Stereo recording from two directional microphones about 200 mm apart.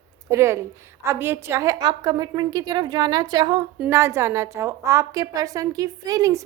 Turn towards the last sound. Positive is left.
turn(degrees=-15)  # may be behind; listen again after turning